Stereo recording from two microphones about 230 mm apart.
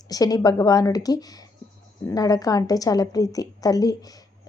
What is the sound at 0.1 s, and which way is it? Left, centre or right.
Speech, centre.